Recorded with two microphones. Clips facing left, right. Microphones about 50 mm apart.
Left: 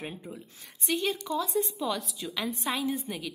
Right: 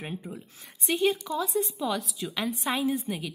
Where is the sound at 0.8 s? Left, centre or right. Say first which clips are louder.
Right 4 dB; right.